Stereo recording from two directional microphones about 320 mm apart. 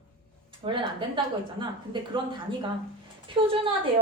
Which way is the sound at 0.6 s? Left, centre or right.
Centre.